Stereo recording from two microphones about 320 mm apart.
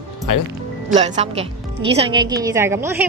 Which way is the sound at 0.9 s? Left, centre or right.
Right.